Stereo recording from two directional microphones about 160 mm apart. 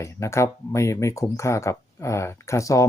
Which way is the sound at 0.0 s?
15° left (ahead or behind).